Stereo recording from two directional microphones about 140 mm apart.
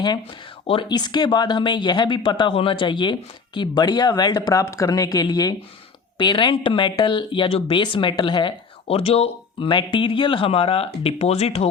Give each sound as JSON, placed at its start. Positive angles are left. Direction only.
{"t": 0.7, "sound": "speech", "side_deg": 35}